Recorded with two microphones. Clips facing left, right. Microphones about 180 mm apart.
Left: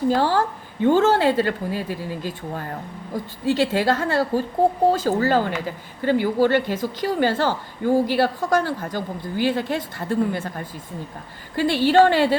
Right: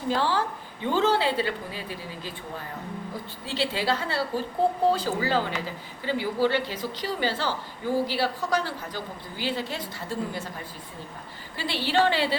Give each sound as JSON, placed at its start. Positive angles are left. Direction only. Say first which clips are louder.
{"t": 0.1, "sound": "a woman's voice", "louder": "even", "side_deg": 45}
{"t": 11.5, "sound": "a woman's voice", "louder": "left 9 dB", "side_deg": 45}